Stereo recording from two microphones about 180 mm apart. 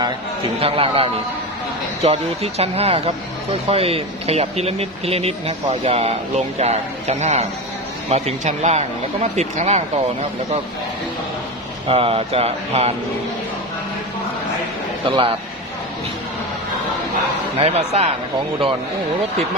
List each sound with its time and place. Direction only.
0.0 s a man's voice: 30° right (ahead or behind)
11.9 s speech: 30° right (ahead or behind)
15.0 s speech: 30° right (ahead or behind)
17.6 s speech: 35° right (ahead or behind)